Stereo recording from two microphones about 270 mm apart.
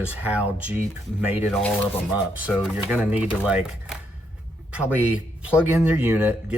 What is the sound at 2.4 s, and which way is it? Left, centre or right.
Speech, centre.